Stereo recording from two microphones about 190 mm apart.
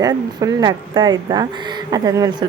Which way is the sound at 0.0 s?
20° right (ahead or behind).